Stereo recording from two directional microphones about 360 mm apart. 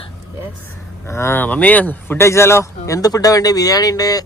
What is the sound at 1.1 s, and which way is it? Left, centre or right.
Speech, centre.